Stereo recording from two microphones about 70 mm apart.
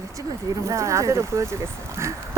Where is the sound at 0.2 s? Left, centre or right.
Right.